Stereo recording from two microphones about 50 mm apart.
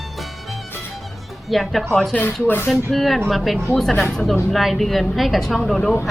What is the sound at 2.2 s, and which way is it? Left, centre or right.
Speech, left.